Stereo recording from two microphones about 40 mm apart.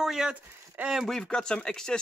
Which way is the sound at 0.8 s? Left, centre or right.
Right.